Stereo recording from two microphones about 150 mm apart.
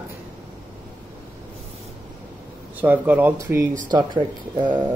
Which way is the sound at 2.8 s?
10° right (ahead or behind).